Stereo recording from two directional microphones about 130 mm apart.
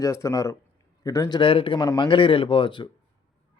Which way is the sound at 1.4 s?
45° left (ahead or behind).